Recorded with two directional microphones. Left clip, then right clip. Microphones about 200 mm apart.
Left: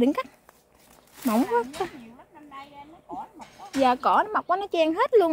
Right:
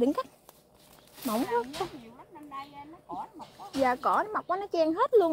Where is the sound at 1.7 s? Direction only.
25° left (ahead or behind).